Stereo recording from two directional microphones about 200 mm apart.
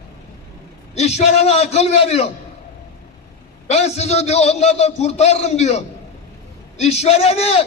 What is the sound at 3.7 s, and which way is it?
A man's voice, 35° left (ahead or behind).